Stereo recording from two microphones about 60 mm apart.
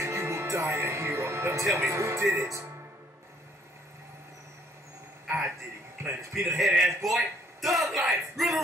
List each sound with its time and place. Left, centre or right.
0.0 s music: right
1.8 s speech: right
6.0 s a sound: right
6.4 s a man's voice: centre